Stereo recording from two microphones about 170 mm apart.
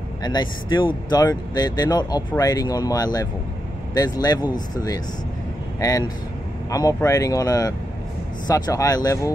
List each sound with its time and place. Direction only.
0.2 s speech: 25° left (ahead or behind)